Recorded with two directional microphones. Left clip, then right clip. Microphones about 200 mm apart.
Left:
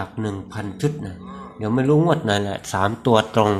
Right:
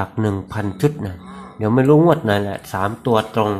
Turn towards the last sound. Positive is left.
turn(degrees=5)  # may be behind; listen again after turning